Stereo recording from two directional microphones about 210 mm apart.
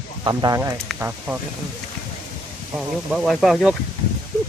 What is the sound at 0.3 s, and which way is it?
Speech, 20° right (ahead or behind).